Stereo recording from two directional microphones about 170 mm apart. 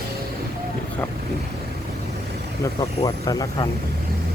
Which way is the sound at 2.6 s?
20° left (ahead or behind).